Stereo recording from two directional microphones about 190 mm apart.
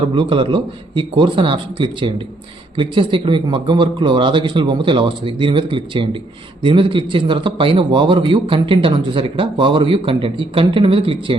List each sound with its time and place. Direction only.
0.1 s a man's voice: 25° right (ahead or behind)